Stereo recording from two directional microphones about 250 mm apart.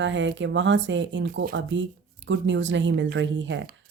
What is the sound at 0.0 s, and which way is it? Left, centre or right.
Speech, right.